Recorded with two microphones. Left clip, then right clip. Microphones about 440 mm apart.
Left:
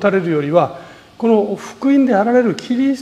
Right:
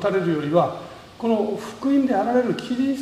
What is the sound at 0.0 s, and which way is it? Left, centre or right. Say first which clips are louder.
Speech: left 6 dB; left.